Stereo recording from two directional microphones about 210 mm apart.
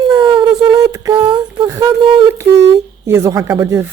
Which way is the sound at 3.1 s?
15° right (ahead or behind).